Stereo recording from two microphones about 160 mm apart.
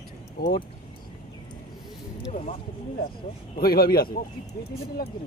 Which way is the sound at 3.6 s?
70° left (ahead or behind).